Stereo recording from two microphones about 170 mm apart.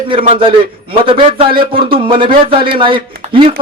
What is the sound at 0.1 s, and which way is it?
A man's voice, 30° right (ahead or behind).